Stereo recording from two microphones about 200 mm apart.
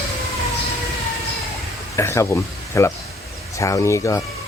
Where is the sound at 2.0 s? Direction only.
15° left (ahead or behind).